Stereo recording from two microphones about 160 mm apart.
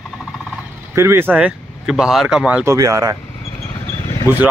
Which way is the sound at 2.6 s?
20° right (ahead or behind).